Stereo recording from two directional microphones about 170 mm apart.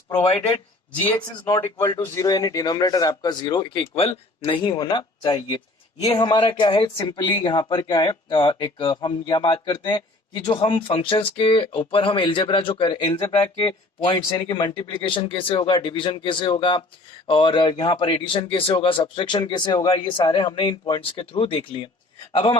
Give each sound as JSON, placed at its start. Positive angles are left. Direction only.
{"t": 0.2, "sound": "speech", "side_deg": 35}
{"t": 1.5, "sound": "speech", "side_deg": 20}